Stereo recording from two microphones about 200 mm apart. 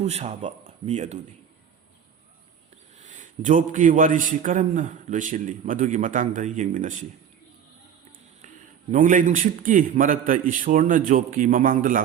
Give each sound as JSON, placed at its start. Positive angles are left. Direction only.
{"t": 0.0, "sound": "a man's voice", "side_deg": -35}
{"t": 3.0, "sound": "a man's voice", "side_deg": -40}
{"t": 8.9, "sound": "a man's voice", "side_deg": -40}